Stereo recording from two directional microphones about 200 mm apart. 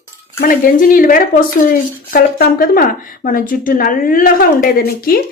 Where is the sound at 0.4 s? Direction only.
45° left (ahead or behind).